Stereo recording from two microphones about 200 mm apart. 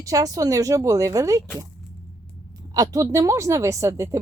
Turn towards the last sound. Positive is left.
turn(degrees=-15)  # may be behind; listen again after turning